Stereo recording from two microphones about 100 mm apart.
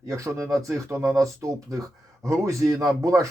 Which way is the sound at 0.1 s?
30° right (ahead or behind).